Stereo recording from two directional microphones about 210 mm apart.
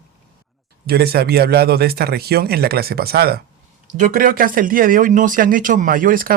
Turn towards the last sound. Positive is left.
turn(degrees=-40)  # may be behind; listen again after turning